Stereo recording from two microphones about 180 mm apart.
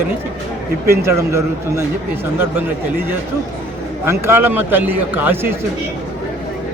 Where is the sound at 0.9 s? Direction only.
15° right (ahead or behind).